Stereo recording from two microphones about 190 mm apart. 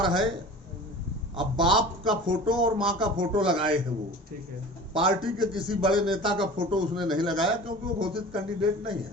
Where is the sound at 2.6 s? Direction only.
25° right (ahead or behind).